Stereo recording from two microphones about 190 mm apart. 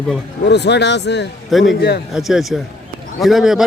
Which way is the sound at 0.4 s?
65° left (ahead or behind).